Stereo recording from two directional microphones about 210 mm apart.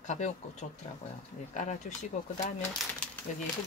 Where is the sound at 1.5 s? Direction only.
35° left (ahead or behind).